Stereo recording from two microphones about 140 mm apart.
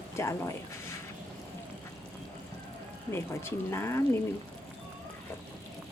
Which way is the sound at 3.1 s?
15° left (ahead or behind).